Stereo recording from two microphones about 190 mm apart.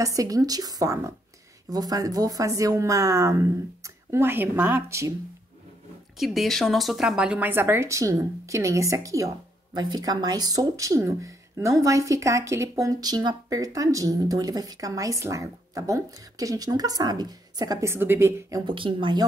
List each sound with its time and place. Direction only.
0.0 s a woman's voice: 20° right (ahead or behind)
6.1 s speech: centre (ahead or behind); by 19.2 s 25° right (ahead or behind)